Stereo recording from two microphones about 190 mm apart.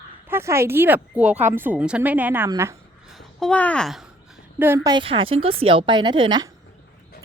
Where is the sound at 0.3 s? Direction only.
15° right (ahead or behind).